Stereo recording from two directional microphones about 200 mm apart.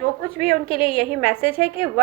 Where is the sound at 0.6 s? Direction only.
25° left (ahead or behind).